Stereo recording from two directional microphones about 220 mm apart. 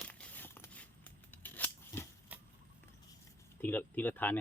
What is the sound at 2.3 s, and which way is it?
Vehicle, 5° right (ahead or behind).